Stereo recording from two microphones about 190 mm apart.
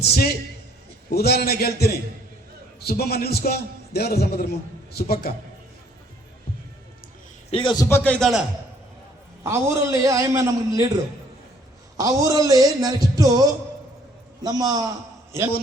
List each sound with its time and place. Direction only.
0.0 s a man's voice: 55° left (ahead or behind)
7.5 s a man's voice: 25° left (ahead or behind)
7.9 s speech: 10° left (ahead or behind)
9.4 s a man's voice: 15° right (ahead or behind)
11.9 s a man's voice: 20° right (ahead or behind)